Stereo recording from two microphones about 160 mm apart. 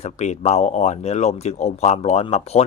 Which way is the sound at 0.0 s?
45° left (ahead or behind).